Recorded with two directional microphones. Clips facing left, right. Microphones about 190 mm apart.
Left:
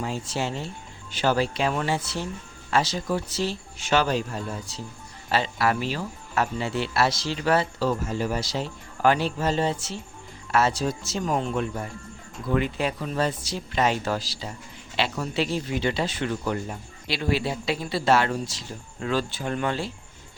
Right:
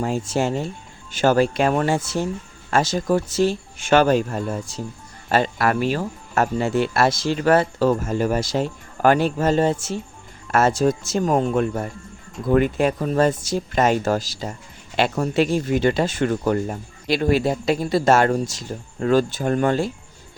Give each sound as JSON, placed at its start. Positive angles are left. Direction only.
{"t": 0.0, "sound": "speech", "side_deg": -45}